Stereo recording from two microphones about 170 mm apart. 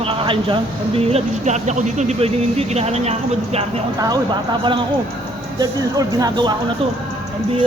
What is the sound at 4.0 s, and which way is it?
Speech, 25° right (ahead or behind).